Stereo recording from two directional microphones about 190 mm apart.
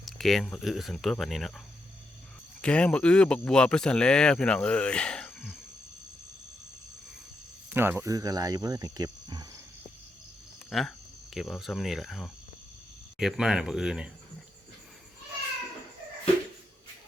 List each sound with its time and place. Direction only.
0.0 s speech: centre (ahead or behind)
7.7 s speech: 10° right (ahead or behind)
10.7 s speech: centre (ahead or behind)